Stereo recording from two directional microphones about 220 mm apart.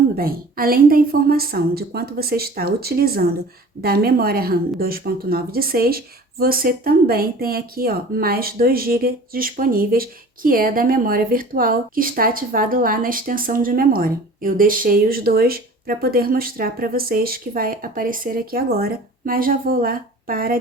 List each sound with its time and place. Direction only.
0.2 s a woman's voice: 40° right (ahead or behind)